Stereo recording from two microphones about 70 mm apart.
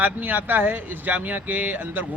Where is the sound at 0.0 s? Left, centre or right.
Right.